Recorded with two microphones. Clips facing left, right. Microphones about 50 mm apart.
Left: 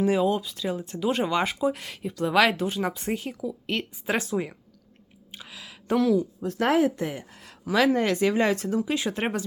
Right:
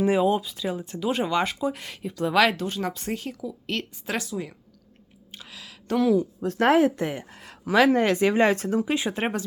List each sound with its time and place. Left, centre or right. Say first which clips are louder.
0.0 s speech: right 1 dB; right
0.4 s speech: even; centre
5.3 s a sound: left 1 dB; centre
6.4 s speech: right 5 dB; right
8.9 s speech: right 1 dB; centre
9.1 s speech: right 1 dB; centre